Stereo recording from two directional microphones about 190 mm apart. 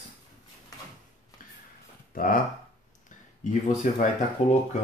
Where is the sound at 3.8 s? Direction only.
45° left (ahead or behind).